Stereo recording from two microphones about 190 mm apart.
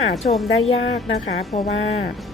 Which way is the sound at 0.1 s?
35° left (ahead or behind).